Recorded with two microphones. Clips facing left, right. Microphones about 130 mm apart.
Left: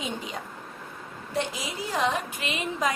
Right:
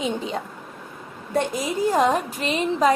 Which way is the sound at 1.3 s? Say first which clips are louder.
Right 7 dB; 50° right (ahead or behind).